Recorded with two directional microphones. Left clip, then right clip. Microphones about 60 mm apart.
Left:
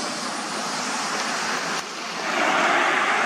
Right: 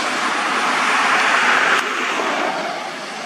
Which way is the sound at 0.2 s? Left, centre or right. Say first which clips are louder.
Right 10 dB; right.